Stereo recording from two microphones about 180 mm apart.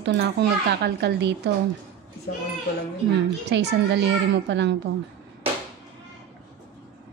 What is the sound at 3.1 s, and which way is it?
A woman's voice, 70° right (ahead or behind).